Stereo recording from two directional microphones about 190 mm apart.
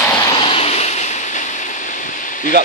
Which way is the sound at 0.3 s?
30° left (ahead or behind).